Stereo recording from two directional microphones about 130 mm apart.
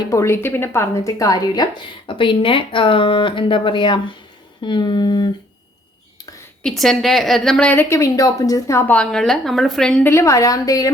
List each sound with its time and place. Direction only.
0.1 s a woman's voice: 20° left (ahead or behind)
2.0 s speech: 40° left (ahead or behind)
6.6 s a woman's voice: 5° left (ahead or behind); by 8.8 s 25° left (ahead or behind)
8.9 s a woman's voice: 5° left (ahead or behind)
10.0 s a woman's voice: 20° left (ahead or behind)